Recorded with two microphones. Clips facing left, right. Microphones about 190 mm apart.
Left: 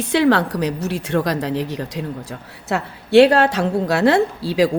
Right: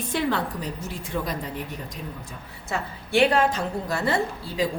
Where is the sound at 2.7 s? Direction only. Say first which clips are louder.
Left 8 dB; 70° left (ahead or behind).